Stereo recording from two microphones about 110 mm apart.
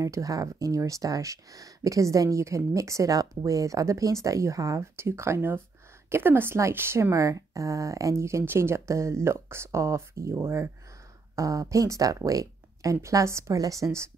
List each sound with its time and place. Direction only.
0.0 s speech: 30° right (ahead or behind)